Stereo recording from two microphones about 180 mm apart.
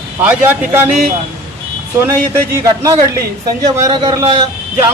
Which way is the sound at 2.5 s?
15° right (ahead or behind).